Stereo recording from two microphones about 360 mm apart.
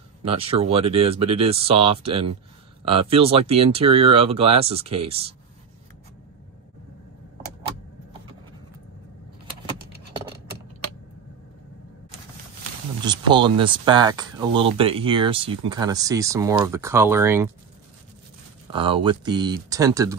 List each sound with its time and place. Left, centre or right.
0.2 s speech: centre
13.0 s a sound: centre
13.6 s speech: centre
18.7 s speech: centre